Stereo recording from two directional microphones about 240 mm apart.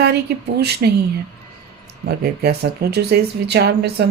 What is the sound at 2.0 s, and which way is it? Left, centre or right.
Speech, right.